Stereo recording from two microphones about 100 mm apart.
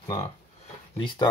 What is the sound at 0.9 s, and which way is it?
Speech, 50° left (ahead or behind).